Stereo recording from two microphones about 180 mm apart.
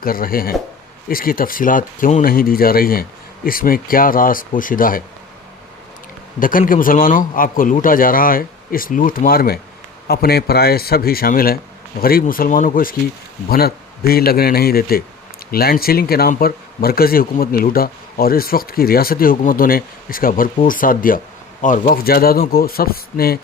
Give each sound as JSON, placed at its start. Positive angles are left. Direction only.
{"t": 0.0, "sound": "a man's voice", "side_deg": 55}
{"t": 6.4, "sound": "a man's voice", "side_deg": 50}